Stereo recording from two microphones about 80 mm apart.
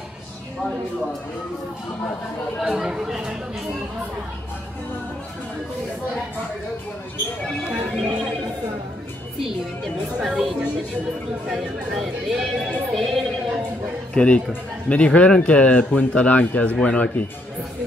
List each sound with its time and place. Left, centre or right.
2.6 s speech: centre
7.9 s speech: centre
10.1 s speech: centre
14.1 s speech: centre